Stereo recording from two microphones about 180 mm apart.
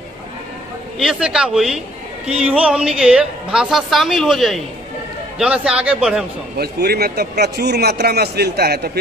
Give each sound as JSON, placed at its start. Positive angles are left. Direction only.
{"t": 0.9, "sound": "a woman's voice", "side_deg": -5}
{"t": 6.6, "sound": "a man's voice", "side_deg": -60}